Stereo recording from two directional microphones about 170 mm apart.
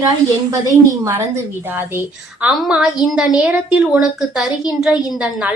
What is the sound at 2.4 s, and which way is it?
A woman's voice, 5° right (ahead or behind).